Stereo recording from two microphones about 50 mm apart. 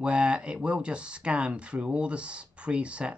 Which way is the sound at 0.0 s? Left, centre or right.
Right.